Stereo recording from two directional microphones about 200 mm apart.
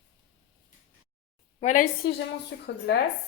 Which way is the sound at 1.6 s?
40° left (ahead or behind).